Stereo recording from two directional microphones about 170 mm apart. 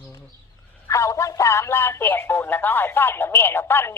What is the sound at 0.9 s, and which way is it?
Speech, 20° left (ahead or behind).